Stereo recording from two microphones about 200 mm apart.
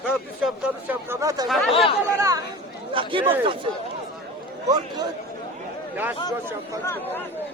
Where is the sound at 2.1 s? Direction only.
15° right (ahead or behind).